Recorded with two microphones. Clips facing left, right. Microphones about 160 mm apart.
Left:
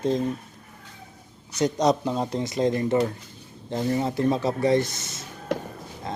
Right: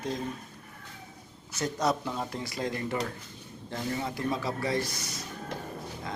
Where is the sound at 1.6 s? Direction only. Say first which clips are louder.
Left 7 dB; 20° left (ahead or behind).